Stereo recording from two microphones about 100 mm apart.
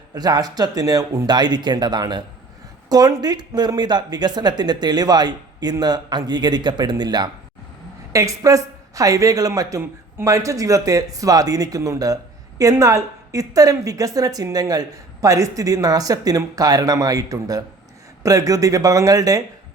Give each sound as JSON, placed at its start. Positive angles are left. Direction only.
{"t": 0.1, "sound": "a woman's voice", "side_deg": -40}
{"t": 8.1, "sound": "a woman's voice", "side_deg": -35}